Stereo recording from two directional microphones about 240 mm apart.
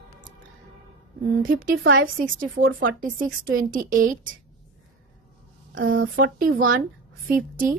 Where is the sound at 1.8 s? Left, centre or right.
Right.